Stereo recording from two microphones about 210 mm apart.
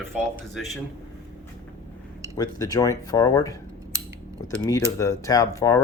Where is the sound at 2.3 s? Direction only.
20° left (ahead or behind).